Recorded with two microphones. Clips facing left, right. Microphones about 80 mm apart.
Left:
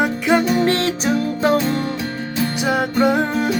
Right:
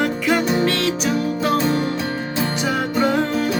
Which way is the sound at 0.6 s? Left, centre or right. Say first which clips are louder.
Left 2 dB; left.